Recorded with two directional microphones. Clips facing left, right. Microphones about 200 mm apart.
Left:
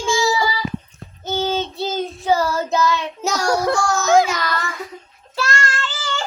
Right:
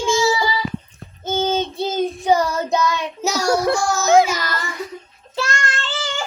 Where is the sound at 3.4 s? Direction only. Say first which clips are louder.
Right 1 dB; 25° right (ahead or behind).